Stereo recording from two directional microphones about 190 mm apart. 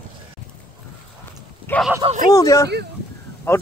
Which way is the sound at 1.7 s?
10° left (ahead or behind).